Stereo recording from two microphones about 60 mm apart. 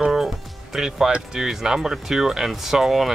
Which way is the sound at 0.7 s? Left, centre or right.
Centre.